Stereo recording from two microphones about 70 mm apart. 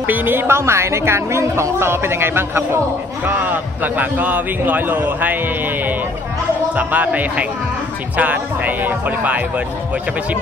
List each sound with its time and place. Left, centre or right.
0.0 s a woman's voice: right
3.3 s a man's voice: right
6.8 s a man's voice: right